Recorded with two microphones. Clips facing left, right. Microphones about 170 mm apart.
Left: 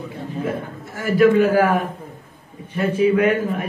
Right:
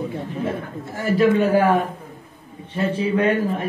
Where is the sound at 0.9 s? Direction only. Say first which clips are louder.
Left 3 dB; 25° right (ahead or behind).